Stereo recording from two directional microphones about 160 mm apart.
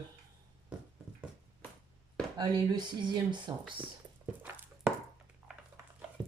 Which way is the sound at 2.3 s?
30° right (ahead or behind).